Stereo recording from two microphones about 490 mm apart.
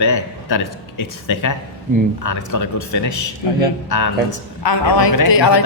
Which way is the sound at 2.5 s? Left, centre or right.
Left.